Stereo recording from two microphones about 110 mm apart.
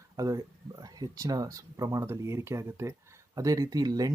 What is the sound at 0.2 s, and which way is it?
Speech, 30° right (ahead or behind).